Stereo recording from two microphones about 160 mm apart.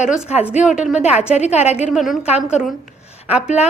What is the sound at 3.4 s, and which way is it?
Speech, 45° left (ahead or behind).